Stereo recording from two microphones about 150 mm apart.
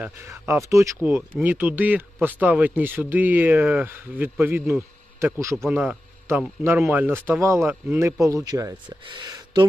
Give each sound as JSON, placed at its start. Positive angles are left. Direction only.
{"t": 0.0, "sound": "speech", "side_deg": -15}